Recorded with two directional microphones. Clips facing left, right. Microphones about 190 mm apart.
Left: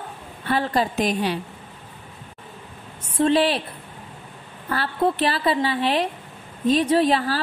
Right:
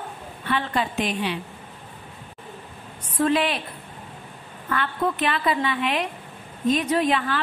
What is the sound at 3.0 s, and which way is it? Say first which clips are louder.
Speech: left 3 dB; 30° left (ahead or behind).